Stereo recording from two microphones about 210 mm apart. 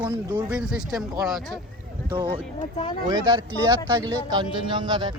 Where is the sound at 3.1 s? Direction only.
20° right (ahead or behind).